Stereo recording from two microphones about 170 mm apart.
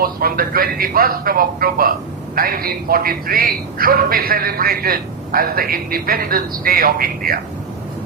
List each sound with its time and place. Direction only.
0.0 s a man's voice: 60° right (ahead or behind)